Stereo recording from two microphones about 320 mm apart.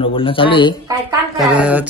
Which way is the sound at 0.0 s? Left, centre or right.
Centre.